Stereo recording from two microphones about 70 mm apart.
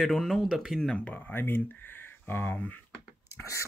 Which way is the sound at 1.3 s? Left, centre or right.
Left.